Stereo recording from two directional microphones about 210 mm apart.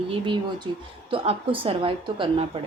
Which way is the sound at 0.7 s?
90° right.